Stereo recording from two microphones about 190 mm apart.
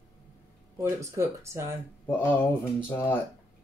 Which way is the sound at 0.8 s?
15° right (ahead or behind).